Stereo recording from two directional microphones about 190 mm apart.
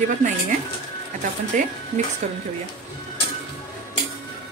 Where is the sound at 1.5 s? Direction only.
40° right (ahead or behind).